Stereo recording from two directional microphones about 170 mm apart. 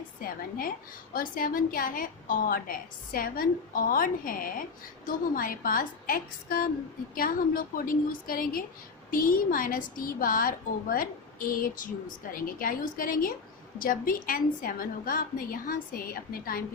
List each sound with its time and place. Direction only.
0.2 s a woman's voice: 55° left (ahead or behind)